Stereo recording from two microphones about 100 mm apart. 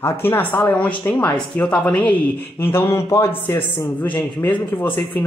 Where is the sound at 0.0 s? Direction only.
25° left (ahead or behind).